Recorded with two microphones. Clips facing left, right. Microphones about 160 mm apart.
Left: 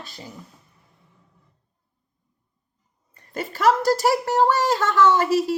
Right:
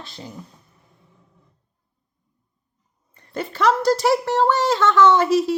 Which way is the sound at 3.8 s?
10° left (ahead or behind).